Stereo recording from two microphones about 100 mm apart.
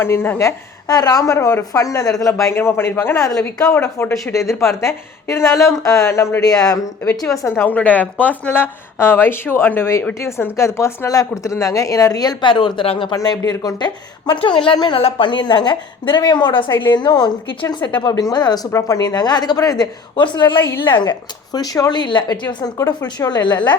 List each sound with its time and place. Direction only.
0.0 s speech: 25° left (ahead or behind)
2.6 s speech: 25° left (ahead or behind)
7.5 s speech: 15° left (ahead or behind); by 13.1 s 65° left (ahead or behind)
13.1 s a woman's voice: 45° left (ahead or behind)
14.4 s a woman's voice: 60° left (ahead or behind)
18.7 s a woman's voice: 35° left (ahead or behind); by 23.7 s 50° left (ahead or behind)